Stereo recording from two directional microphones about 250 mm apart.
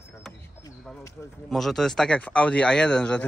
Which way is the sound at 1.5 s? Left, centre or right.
Centre.